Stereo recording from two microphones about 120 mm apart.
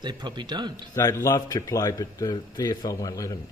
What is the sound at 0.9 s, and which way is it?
A man's voice, 25° left (ahead or behind).